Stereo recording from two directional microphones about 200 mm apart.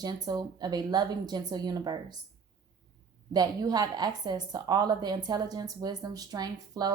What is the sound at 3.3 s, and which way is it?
Speech, 20° right (ahead or behind).